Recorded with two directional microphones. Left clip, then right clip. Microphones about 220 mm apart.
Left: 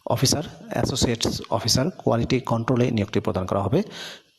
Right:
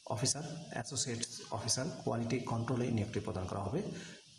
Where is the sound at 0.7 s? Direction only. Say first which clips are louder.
Left 16 dB; 40° left (ahead or behind).